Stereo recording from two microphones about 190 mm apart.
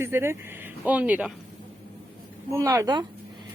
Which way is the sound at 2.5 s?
15° right (ahead or behind).